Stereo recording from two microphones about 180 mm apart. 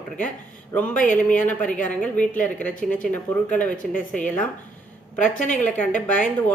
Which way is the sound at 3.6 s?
10° left (ahead or behind).